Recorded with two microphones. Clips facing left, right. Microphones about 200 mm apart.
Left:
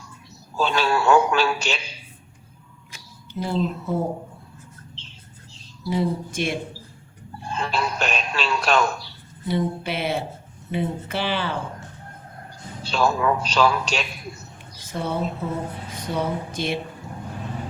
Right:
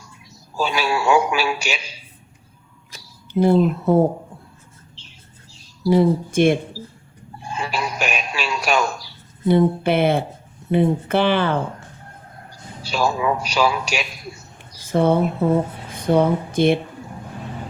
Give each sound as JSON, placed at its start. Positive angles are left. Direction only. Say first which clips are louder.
{"t": 0.5, "sound": "a man's voice", "louder": "even", "side_deg": -10}
{"t": 3.3, "sound": "speech", "louder": "right 9 dB", "side_deg": -55}
{"t": 5.8, "sound": "speech", "louder": "right 8 dB", "side_deg": -55}
{"t": 7.4, "sound": "a sound", "louder": "even", "side_deg": -10}
{"t": 9.5, "sound": "speech", "louder": "right 8 dB", "side_deg": -55}
{"t": 12.8, "sound": "a man's voice", "louder": "even", "side_deg": -10}
{"t": 14.9, "sound": "speech", "louder": "right 9 dB", "side_deg": -55}